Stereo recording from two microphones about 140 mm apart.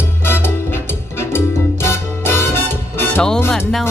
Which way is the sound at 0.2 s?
15° left (ahead or behind).